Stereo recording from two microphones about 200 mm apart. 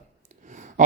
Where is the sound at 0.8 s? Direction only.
40° right (ahead or behind).